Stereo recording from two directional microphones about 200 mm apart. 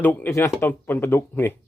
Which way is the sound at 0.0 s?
10° left (ahead or behind).